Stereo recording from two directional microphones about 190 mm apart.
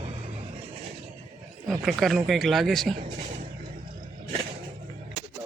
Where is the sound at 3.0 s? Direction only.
40° right (ahead or behind).